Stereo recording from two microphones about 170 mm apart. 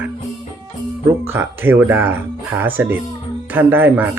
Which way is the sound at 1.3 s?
15° right (ahead or behind).